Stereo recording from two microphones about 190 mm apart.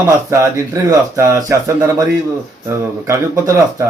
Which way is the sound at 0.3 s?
15° right (ahead or behind).